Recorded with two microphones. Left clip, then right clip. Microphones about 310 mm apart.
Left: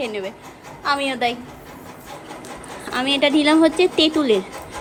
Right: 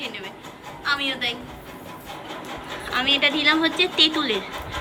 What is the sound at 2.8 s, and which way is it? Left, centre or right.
A woman's voice, centre.